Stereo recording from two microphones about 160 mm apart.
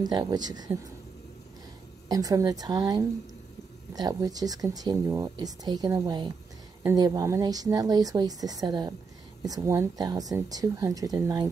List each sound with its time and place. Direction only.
0.0 s speech: 25° right (ahead or behind)
2.0 s speech: 20° right (ahead or behind)